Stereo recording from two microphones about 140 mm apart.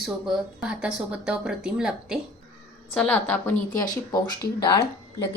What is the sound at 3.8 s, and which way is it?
Speech, 25° left (ahead or behind).